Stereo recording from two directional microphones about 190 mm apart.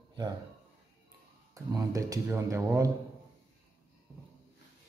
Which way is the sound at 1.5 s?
15° right (ahead or behind).